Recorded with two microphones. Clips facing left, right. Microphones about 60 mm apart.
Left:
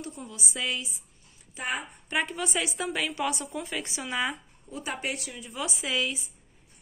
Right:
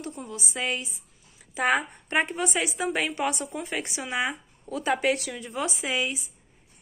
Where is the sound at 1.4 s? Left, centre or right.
Right.